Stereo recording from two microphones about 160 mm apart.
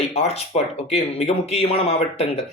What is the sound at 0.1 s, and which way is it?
Speech, 40° left (ahead or behind).